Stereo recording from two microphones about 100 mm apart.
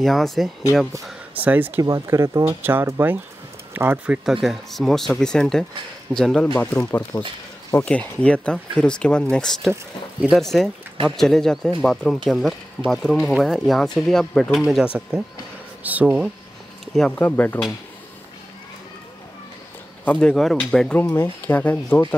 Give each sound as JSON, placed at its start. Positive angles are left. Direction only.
{"t": 0.0, "sound": "speech", "side_deg": 0}
{"t": 1.3, "sound": "speech", "side_deg": -15}
{"t": 1.8, "sound": "speech", "side_deg": -30}
{"t": 4.4, "sound": "speech", "side_deg": 0}
{"t": 7.1, "sound": "speech", "side_deg": 20}
{"t": 14.6, "sound": "speech", "side_deg": -5}
{"t": 16.9, "sound": "speech", "side_deg": 5}
{"t": 17.2, "sound": "speech", "side_deg": 20}
{"t": 20.1, "sound": "speech", "side_deg": 10}
{"t": 21.0, "sound": "speech", "side_deg": 20}